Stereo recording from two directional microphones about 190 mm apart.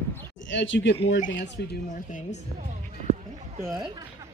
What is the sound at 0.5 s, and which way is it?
Speech, 70° left (ahead or behind).